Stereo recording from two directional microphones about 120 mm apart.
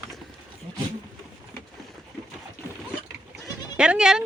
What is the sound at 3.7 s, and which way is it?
Speech, 10° right (ahead or behind).